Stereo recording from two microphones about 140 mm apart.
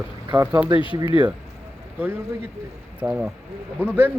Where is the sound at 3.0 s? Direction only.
10° right (ahead or behind).